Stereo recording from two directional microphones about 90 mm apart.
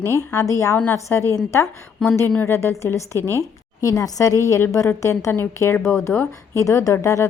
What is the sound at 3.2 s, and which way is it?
Speech, 30° right (ahead or behind).